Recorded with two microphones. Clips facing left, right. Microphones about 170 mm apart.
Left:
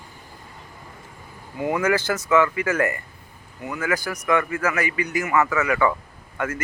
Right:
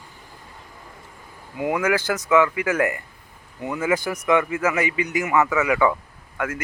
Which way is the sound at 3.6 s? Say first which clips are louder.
Right 3 dB; 25° right (ahead or behind).